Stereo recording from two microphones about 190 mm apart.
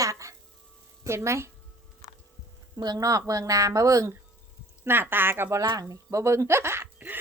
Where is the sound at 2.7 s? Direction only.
20° right (ahead or behind).